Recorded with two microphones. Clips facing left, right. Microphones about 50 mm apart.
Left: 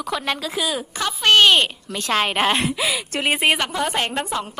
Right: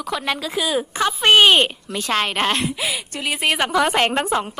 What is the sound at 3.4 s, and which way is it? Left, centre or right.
Speech, centre.